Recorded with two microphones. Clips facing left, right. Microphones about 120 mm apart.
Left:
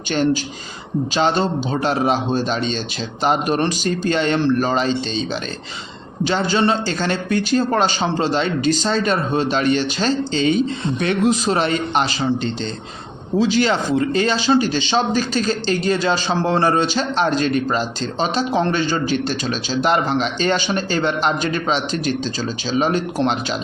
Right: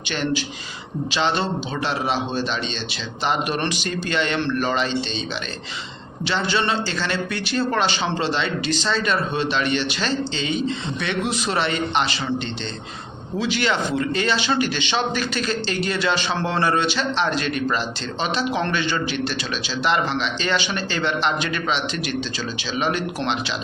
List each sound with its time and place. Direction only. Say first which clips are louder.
1.1 s a man's voice: left 4 dB; 40° left (ahead or behind)
6.2 s speech: left 5 dB; 40° left (ahead or behind)
13.4 s speech: left 5 dB; 40° left (ahead or behind)